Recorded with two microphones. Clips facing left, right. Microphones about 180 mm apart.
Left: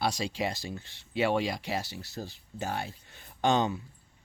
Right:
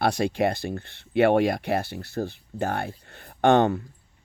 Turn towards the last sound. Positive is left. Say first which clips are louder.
# right 8 dB
turn(degrees=-60)  # may be behind; listen again after turning